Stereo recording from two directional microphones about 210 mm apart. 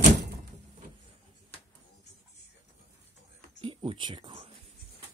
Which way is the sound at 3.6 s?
25° right (ahead or behind).